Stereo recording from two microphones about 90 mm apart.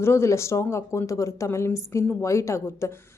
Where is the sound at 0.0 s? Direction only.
30° left (ahead or behind).